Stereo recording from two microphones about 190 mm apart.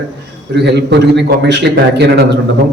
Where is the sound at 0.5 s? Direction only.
65° right (ahead or behind).